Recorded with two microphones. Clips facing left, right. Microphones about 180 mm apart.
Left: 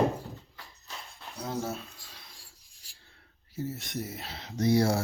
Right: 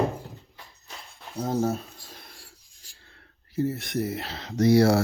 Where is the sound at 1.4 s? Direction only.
40° right (ahead or behind).